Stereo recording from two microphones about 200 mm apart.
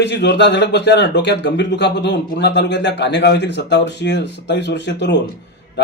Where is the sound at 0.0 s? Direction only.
60° left (ahead or behind).